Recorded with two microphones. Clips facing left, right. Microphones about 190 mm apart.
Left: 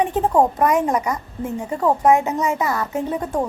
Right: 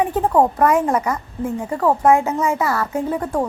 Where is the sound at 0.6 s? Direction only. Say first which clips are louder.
Right 2 dB; 20° left (ahead or behind).